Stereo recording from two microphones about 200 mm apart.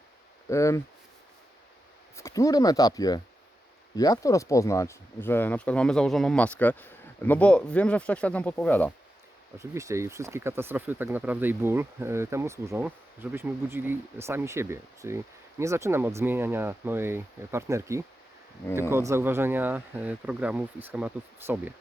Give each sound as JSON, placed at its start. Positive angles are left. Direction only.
{"t": 0.4, "sound": "speech", "side_deg": 15}
{"t": 2.1, "sound": "speech", "side_deg": 15}
{"t": 9.6, "sound": "speech", "side_deg": -15}